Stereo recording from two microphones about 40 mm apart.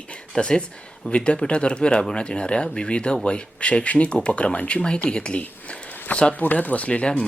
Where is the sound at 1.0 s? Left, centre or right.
Left.